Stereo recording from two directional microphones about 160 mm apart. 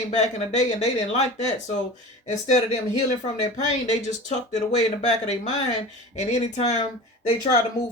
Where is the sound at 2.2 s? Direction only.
50° left (ahead or behind).